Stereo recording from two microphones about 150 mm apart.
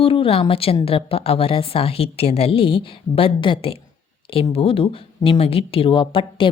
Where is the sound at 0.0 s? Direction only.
35° left (ahead or behind).